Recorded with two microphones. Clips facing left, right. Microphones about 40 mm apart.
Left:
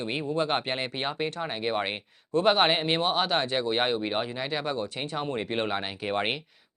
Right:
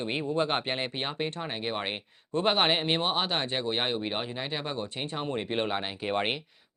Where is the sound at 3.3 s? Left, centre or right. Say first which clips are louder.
Left 3 dB; centre.